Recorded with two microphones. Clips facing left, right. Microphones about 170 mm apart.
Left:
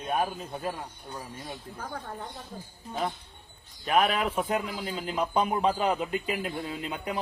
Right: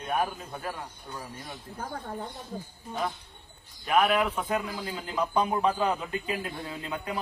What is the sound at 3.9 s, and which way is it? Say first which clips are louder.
A man's voice: right 1 dB; 30° left (ahead or behind).